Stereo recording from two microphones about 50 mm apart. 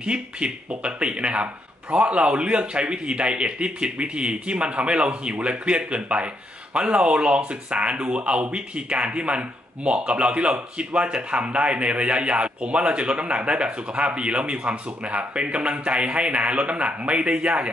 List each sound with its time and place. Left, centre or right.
0.0 s speech: right